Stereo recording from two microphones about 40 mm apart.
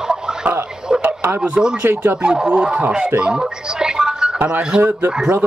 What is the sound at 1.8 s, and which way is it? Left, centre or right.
Speech, right.